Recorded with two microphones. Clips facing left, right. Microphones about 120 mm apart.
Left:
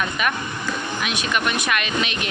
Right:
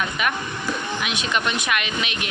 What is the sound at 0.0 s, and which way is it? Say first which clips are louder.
Speech: left 1 dB; 15° right (ahead or behind).